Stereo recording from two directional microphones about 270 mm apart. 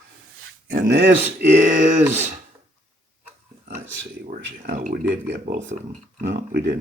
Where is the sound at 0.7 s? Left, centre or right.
Right.